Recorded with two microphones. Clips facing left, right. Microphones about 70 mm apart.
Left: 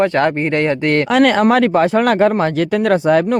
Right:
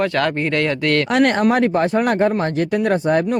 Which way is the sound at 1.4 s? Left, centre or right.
Left.